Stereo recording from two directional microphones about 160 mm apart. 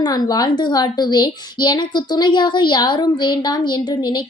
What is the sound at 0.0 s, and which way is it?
A woman's voice, 25° left (ahead or behind).